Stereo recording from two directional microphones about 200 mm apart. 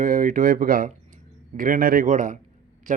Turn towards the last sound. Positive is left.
turn(degrees=-40)  # may be behind; listen again after turning